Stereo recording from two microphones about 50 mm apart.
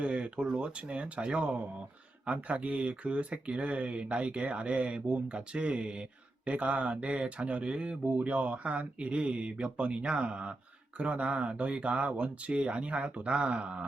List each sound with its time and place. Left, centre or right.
0.0 s speech: right